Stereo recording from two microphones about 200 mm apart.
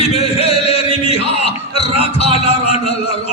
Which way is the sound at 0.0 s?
30° left (ahead or behind).